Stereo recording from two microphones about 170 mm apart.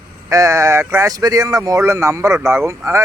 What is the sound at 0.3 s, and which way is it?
Speech, 20° right (ahead or behind).